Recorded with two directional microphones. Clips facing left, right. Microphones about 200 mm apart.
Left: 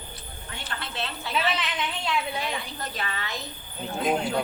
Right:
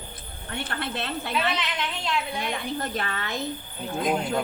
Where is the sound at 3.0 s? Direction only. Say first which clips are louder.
Right 3 dB; 50° right (ahead or behind).